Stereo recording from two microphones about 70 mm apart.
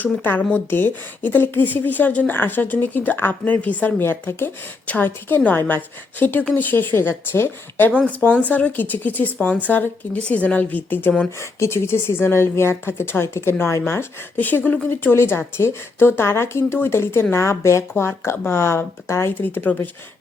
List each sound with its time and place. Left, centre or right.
0.0 s a woman's voice: left
11.3 s speech: left
19.4 s a woman's voice: left